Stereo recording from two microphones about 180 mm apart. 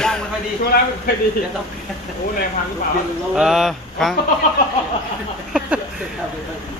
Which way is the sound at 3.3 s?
5° right (ahead or behind).